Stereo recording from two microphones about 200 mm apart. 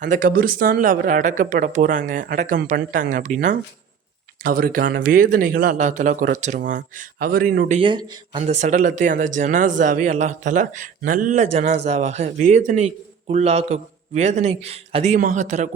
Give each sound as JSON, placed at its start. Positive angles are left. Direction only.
{"t": 0.0, "sound": "a man's voice", "side_deg": -40}
{"t": 7.7, "sound": "a man's voice", "side_deg": -25}